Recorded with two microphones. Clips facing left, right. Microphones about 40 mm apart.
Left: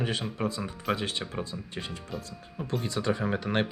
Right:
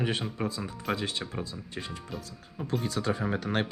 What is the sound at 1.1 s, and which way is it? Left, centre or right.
Speech, centre.